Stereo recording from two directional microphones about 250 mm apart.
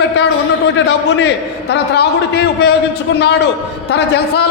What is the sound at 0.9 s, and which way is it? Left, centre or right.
A man's voice, left.